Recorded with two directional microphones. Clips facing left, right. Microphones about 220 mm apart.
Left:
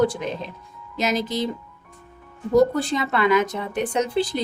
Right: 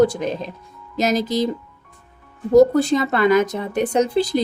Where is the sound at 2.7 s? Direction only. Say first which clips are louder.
Right 6 dB; 40° right (ahead or behind).